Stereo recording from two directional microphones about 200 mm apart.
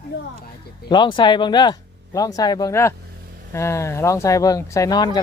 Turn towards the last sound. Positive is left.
turn(degrees=20)  # may be behind; listen again after turning